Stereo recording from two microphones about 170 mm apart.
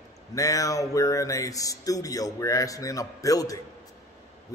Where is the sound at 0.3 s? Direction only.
20° left (ahead or behind).